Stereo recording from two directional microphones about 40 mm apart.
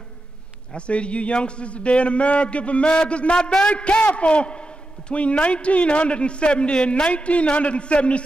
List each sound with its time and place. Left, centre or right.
0.7 s a man's voice: left